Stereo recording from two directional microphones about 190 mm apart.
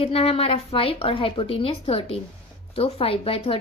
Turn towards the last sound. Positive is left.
turn(degrees=30)  # may be behind; listen again after turning